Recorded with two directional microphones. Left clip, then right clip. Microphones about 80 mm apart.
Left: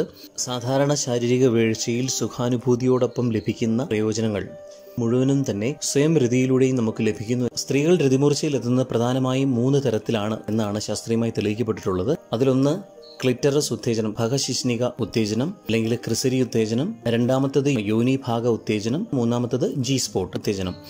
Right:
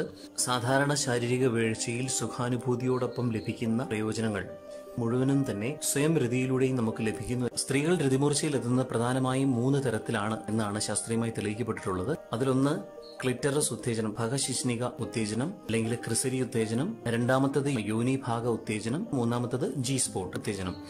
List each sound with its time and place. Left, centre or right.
0.5 s speech: left
1.1 s speech: left
15.0 s speech: left
17.4 s speech: left
18.7 s speech: left
19.1 s speech: left